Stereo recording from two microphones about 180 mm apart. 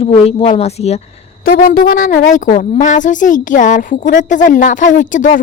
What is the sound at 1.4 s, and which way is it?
Speech, 55° left (ahead or behind).